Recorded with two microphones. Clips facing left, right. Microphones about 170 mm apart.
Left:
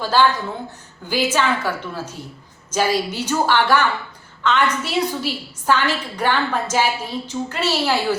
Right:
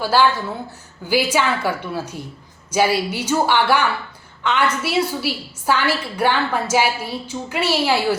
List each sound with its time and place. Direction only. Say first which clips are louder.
0.0 s a woman's voice: right 1 dB; 10° right (ahead or behind)